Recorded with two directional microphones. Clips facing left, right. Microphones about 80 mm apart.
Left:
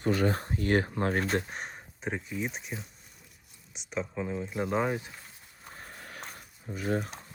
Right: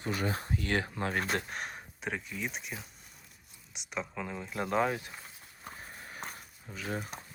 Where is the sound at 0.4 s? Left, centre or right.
Left.